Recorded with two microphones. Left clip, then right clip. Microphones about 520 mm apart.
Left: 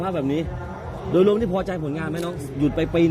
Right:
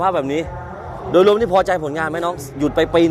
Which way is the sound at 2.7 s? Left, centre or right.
Right.